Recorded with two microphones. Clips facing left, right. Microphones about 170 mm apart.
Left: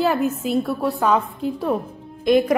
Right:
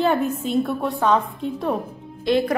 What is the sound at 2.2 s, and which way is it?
Speech, 15° left (ahead or behind).